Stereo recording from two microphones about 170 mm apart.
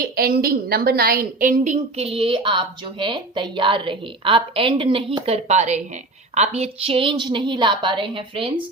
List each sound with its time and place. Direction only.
0.0 s a woman's voice: 65° right (ahead or behind); by 8.5 s 30° right (ahead or behind)